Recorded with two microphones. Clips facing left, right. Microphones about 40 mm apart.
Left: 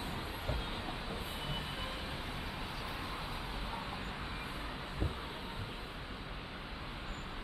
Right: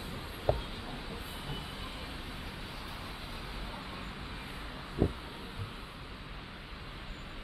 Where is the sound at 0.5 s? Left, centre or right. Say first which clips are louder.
Right 11 dB; right.